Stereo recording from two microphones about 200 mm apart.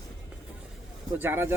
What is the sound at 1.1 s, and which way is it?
Speech, 10° right (ahead or behind).